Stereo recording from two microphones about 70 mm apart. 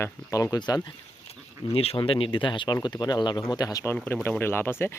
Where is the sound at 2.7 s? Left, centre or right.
Left.